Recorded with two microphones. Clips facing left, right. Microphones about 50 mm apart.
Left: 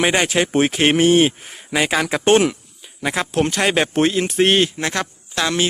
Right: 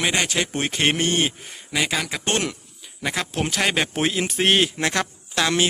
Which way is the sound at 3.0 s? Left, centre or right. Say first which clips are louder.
Left 6 dB; centre.